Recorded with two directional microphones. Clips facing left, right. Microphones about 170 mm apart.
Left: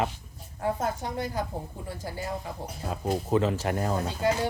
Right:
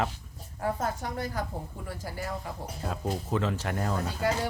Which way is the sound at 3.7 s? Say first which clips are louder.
Left 3 dB; 25° left (ahead or behind).